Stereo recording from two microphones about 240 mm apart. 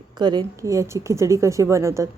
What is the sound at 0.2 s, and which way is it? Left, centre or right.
A woman's voice, centre.